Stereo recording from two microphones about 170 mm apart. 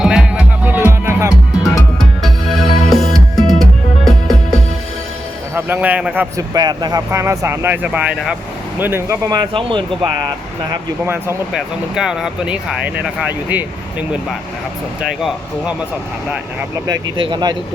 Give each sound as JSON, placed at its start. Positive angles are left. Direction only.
{"t": 0.0, "sound": "music", "side_deg": -5}
{"t": 2.0, "sound": "music", "side_deg": 0}
{"t": 5.5, "sound": "speech", "side_deg": -10}
{"t": 6.3, "sound": "speech", "side_deg": -20}
{"t": 9.5, "sound": "speech", "side_deg": -30}
{"t": 10.7, "sound": "speech", "side_deg": -15}
{"t": 11.5, "sound": "speech", "side_deg": 0}
{"t": 15.0, "sound": "speech", "side_deg": -5}
{"t": 16.7, "sound": "speech", "side_deg": -20}